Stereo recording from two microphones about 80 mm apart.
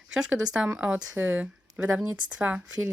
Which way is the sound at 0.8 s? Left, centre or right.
Right.